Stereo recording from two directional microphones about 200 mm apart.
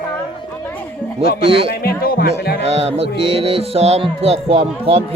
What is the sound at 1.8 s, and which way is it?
Speech, 50° left (ahead or behind).